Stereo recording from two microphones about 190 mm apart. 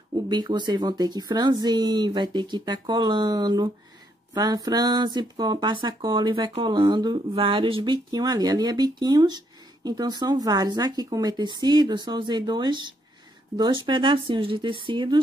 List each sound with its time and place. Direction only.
0.3 s speech: 25° right (ahead or behind)